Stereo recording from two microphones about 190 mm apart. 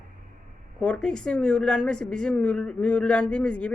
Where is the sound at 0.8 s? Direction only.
5° left (ahead or behind).